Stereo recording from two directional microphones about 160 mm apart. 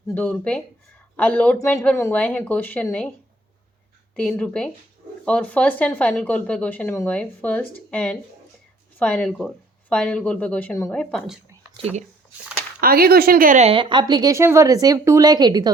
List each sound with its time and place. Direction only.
0.1 s speech: 10° left (ahead or behind)
4.1 s speech: 5° left (ahead or behind)
10.9 s speech: centre (ahead or behind)
11.8 s speech: 40° right (ahead or behind)
12.8 s a woman's voice: 70° right (ahead or behind)
13.7 s a woman's voice: 30° right (ahead or behind)